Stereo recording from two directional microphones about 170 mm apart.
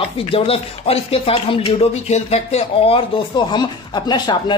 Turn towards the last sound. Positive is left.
turn(degrees=25)  # may be behind; listen again after turning